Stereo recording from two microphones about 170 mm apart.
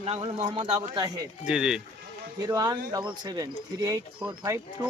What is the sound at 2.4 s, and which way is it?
Speech, 25° right (ahead or behind).